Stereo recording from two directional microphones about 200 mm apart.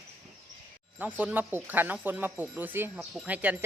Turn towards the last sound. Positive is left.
turn(degrees=-5)  # may be behind; listen again after turning